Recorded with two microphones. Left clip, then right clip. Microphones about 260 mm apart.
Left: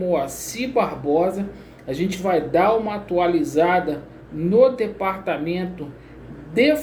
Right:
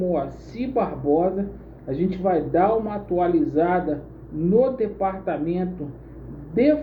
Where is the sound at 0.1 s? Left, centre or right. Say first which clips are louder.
Left 3 dB; centre.